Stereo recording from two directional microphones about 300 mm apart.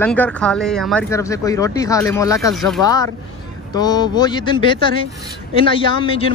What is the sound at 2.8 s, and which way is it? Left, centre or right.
Speech, centre.